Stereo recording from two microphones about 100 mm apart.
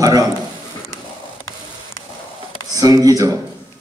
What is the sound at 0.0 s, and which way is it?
Speech, 35° right (ahead or behind).